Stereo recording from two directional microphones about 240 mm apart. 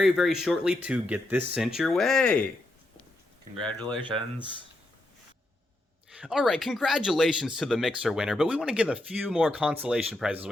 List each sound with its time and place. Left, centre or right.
0.0 s speech: centre
3.6 s speech: centre
3.8 s speech: centre
6.1 s speech: centre